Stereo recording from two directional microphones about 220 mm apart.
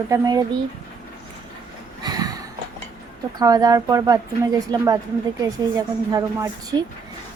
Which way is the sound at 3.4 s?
15° right (ahead or behind).